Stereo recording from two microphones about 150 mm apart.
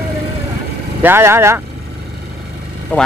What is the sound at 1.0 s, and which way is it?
Speech, 15° right (ahead or behind).